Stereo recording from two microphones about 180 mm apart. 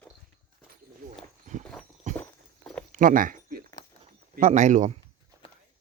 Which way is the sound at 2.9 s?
50° right (ahead or behind).